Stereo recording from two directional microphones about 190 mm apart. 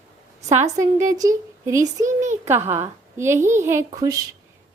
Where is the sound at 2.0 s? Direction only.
40° right (ahead or behind).